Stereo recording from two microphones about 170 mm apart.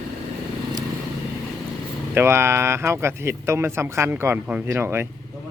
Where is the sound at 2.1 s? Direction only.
15° right (ahead or behind).